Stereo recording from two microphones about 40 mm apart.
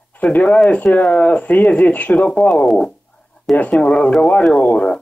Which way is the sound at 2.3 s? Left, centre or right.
Left.